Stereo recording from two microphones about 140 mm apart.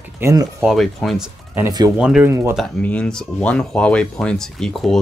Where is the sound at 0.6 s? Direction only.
Centre (ahead or behind).